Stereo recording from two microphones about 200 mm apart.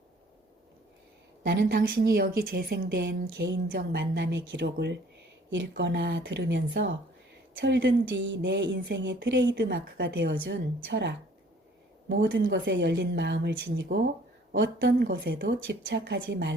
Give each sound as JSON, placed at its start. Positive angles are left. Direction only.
{"t": 1.5, "sound": "speech", "side_deg": -50}